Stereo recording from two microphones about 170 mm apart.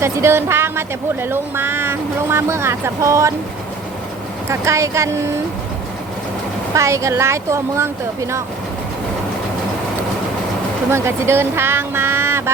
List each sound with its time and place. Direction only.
0.0 s speech: 15° right (ahead or behind)
4.4 s speech: 15° right (ahead or behind)
6.7 s speech: 15° right (ahead or behind)
10.8 s speech: 15° right (ahead or behind)